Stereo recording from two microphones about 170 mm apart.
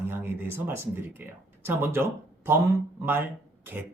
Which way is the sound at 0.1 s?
10° right (ahead or behind).